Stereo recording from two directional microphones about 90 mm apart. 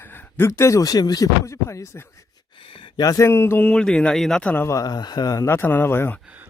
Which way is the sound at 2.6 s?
75° left (ahead or behind).